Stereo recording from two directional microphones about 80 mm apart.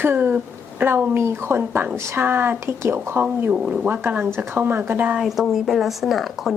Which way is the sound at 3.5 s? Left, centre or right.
Centre.